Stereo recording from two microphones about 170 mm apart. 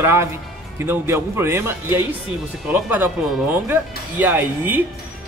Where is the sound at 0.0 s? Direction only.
15° right (ahead or behind).